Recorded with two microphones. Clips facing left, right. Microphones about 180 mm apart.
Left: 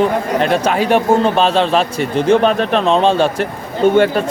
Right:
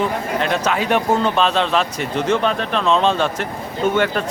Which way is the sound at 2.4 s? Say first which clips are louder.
Left 6 dB; 60° left (ahead or behind).